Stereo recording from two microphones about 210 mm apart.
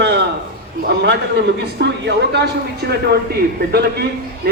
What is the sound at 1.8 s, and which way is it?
A man's voice, 55° right (ahead or behind).